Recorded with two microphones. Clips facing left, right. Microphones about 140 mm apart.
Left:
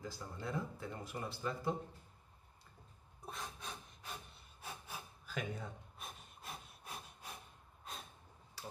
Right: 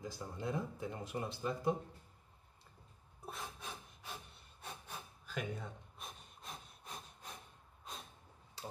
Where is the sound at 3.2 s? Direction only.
5° right (ahead or behind).